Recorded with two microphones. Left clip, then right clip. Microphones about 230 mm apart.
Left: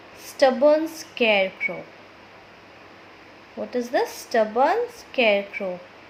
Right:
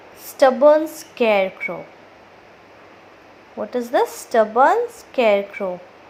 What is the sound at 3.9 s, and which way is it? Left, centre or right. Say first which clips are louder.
A woman's voice: right 5 dB; centre.